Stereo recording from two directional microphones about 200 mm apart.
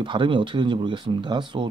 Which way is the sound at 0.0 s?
25° right (ahead or behind).